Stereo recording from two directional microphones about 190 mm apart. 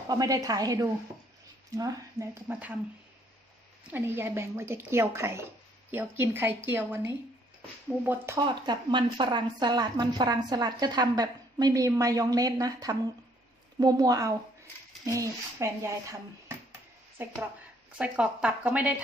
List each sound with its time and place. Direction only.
0.1 s a woman's voice: 20° right (ahead or behind)
3.8 s speech: 10° right (ahead or behind)
8.4 s a woman's voice: 25° right (ahead or behind)
17.2 s speech: 10° right (ahead or behind)